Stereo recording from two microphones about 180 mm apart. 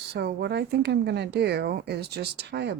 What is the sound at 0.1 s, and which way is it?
A woman's voice, 65° right (ahead or behind).